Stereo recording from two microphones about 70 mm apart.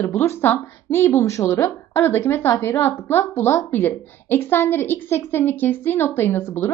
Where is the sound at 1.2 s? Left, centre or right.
Left.